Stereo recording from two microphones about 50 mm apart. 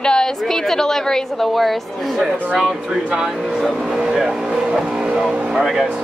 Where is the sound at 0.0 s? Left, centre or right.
Centre.